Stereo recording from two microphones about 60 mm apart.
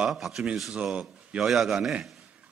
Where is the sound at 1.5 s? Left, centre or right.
Centre.